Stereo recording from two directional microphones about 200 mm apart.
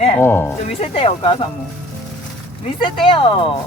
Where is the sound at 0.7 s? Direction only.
30° left (ahead or behind).